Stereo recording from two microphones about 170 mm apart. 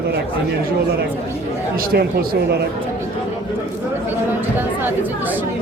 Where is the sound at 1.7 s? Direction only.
60° right (ahead or behind).